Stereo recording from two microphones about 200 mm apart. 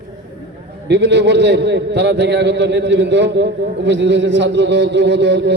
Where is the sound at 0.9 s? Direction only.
60° right (ahead or behind).